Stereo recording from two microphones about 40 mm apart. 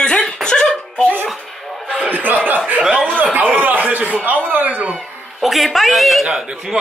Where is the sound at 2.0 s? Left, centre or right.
Right.